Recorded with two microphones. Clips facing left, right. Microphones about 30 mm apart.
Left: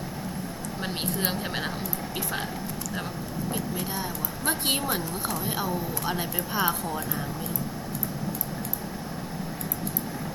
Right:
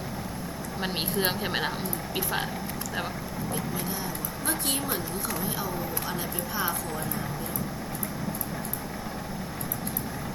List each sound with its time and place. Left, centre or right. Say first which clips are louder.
0.8 s speech: right 2 dB; centre
4.4 s speech: left 3 dB; left